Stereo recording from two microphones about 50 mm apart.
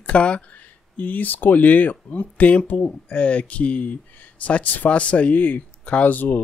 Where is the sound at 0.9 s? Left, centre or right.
Left.